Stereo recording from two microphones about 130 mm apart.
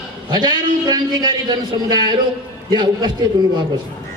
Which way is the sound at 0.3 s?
35° right (ahead or behind).